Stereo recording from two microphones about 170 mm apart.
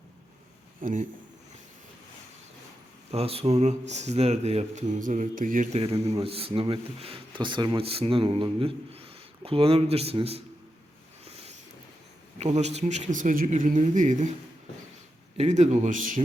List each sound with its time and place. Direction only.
0.8 s speech: 50° right (ahead or behind)
3.1 s speech: 35° right (ahead or behind); by 5.8 s 50° right (ahead or behind)
5.8 s speech: 35° right (ahead or behind)
11.3 s a sound: 35° right (ahead or behind)
12.4 s speech: 40° right (ahead or behind)
15.4 s speech: 45° right (ahead or behind)